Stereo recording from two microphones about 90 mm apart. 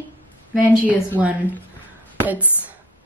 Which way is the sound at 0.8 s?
15° right (ahead or behind).